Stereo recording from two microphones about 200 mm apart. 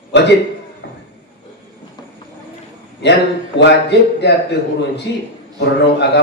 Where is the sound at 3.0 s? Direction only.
60° left (ahead or behind).